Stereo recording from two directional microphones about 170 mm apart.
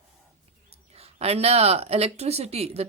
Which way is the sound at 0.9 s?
35° right (ahead or behind).